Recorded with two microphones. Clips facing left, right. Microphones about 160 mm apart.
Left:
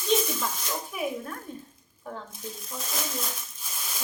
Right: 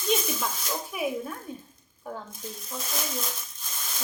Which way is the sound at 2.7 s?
Centre (ahead or behind).